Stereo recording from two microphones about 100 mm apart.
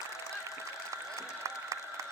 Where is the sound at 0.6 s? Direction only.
30° right (ahead or behind).